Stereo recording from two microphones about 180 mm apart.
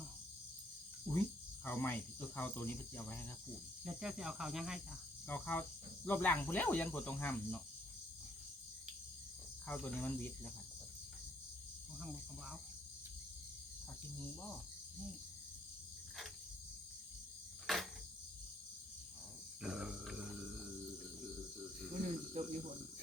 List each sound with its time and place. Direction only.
1.6 s cricket: 10° left (ahead or behind)
3.8 s cricket: 5° right (ahead or behind)
5.3 s cricket: 10° left (ahead or behind)
9.6 s cricket: 5° left (ahead or behind)
11.9 s cricket: 5° right (ahead or behind)
17.7 s cricket: centre (ahead or behind)
19.6 s a sound: 5° right (ahead or behind)
22.0 s cricket: 40° right (ahead or behind)